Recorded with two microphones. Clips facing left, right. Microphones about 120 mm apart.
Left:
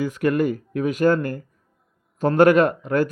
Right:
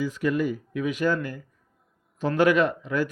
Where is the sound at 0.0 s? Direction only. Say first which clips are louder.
Left 4 dB; 60° left (ahead or behind).